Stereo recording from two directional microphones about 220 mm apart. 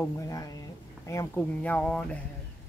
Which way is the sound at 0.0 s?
15° left (ahead or behind).